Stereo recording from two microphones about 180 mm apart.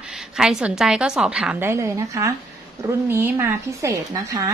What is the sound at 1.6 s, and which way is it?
A woman's voice, 15° right (ahead or behind).